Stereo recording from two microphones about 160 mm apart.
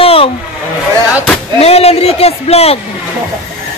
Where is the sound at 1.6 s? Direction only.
40° left (ahead or behind).